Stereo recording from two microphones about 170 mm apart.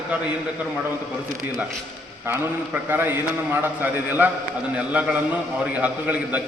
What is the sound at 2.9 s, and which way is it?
A man's voice, 10° right (ahead or behind).